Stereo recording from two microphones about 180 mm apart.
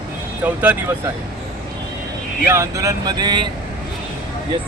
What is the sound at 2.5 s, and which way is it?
Speech, 15° right (ahead or behind).